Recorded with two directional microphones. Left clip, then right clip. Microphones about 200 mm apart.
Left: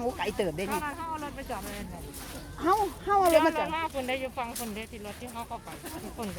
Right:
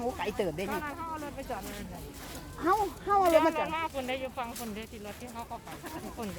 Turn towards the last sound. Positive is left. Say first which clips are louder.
# left 2 dB
turn(degrees=25)  # may be behind; listen again after turning